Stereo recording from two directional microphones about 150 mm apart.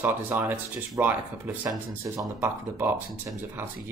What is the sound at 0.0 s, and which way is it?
Speech, 10° right (ahead or behind).